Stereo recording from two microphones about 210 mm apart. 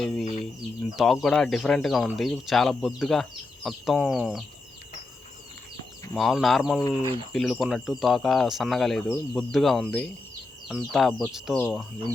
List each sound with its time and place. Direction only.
0.9 s speech: centre (ahead or behind)
6.1 s speech: centre (ahead or behind)
6.7 s speech: 15° left (ahead or behind)
7.3 s speech: centre (ahead or behind)